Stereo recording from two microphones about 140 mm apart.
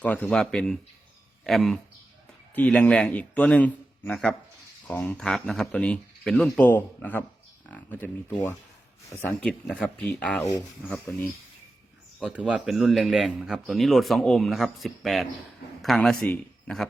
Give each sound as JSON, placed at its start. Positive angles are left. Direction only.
{"t": 0.0, "sound": "a man's voice", "side_deg": 5}
{"t": 9.4, "sound": "speech", "side_deg": 5}
{"t": 12.2, "sound": "a man's voice", "side_deg": -10}